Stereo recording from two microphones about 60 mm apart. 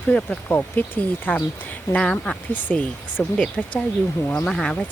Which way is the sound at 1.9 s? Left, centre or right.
Centre.